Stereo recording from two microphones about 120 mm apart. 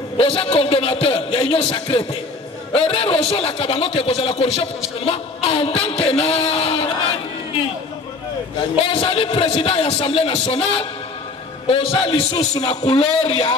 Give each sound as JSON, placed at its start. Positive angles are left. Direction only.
{"t": 0.2, "sound": "a man's voice", "side_deg": 50}
{"t": 8.7, "sound": "a man's voice", "side_deg": 50}